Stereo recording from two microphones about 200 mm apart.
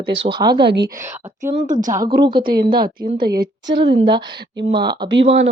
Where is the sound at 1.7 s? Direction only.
20° right (ahead or behind).